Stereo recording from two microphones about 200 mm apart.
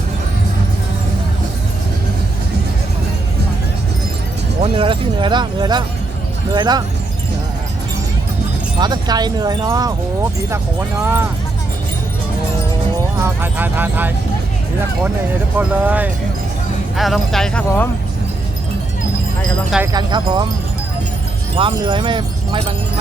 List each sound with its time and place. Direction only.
4.6 s speech: 25° right (ahead or behind)
8.8 s speech: 20° right (ahead or behind)
13.2 s speech: 10° right (ahead or behind)
15.5 s speech: 10° right (ahead or behind)
19.9 s speech: 20° right (ahead or behind)
21.5 s speech: 25° right (ahead or behind)